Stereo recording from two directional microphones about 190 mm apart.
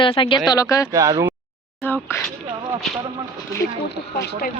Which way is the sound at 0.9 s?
20° right (ahead or behind).